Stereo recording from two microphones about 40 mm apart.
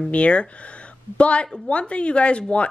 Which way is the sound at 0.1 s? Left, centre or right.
Left.